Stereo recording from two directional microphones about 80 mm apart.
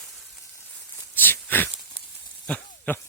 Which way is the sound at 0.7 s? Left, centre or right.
Left.